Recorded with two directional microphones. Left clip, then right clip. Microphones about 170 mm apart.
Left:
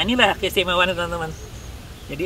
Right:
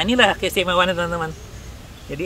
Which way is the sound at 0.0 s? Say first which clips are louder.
Right 1 dB; 25° right (ahead or behind).